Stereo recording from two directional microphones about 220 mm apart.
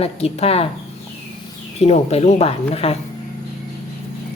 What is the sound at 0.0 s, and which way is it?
Speech, 25° left (ahead or behind).